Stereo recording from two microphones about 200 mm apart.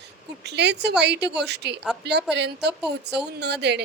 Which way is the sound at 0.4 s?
60° right (ahead or behind).